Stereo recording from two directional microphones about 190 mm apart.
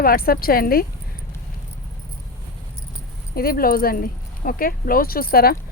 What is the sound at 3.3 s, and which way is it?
Speech, 50° left (ahead or behind).